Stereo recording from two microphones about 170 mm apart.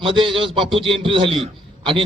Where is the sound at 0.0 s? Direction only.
30° right (ahead or behind).